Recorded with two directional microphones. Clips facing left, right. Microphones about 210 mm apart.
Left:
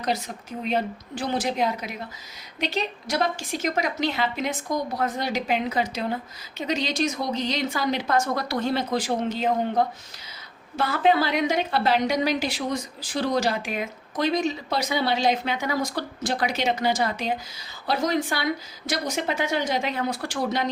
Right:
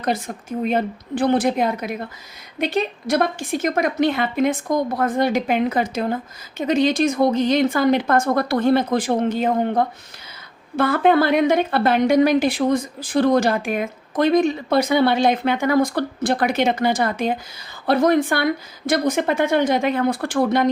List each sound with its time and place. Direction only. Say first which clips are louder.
0.6 s a woman's voice: right 4 dB; 55° right (ahead or behind)